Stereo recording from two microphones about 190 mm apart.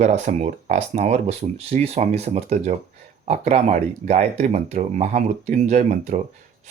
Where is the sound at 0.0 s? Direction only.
35° right (ahead or behind).